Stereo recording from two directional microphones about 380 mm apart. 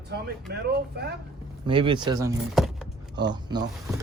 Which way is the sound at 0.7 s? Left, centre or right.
Right.